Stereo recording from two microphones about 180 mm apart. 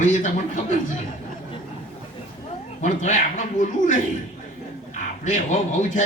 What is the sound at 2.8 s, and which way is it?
A man's voice, 45° left (ahead or behind).